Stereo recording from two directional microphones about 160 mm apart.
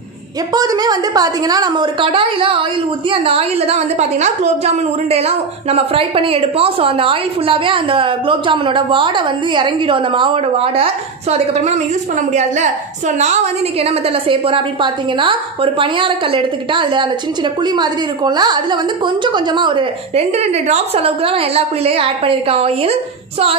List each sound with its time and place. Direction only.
0.5 s a woman's voice: 25° right (ahead or behind); by 11.8 s 45° right (ahead or behind)
13.2 s a woman's voice: 45° right (ahead or behind)